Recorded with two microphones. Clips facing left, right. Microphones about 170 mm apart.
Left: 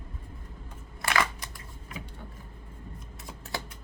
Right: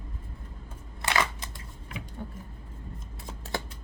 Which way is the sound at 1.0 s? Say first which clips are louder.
Even; 20° right (ahead or behind).